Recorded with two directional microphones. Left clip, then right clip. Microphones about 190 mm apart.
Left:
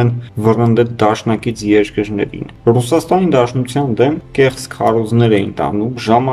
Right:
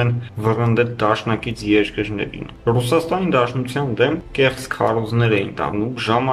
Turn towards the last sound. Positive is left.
turn(degrees=45)  # may be behind; listen again after turning